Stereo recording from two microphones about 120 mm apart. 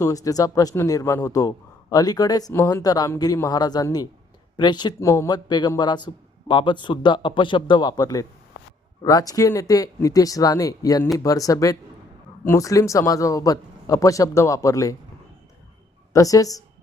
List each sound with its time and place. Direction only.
0.0 s a man's voice: 30° left (ahead or behind)
5.0 s speech: 25° left (ahead or behind)
5.3 s a man's voice: 35° left (ahead or behind)
16.1 s speech: 30° left (ahead or behind)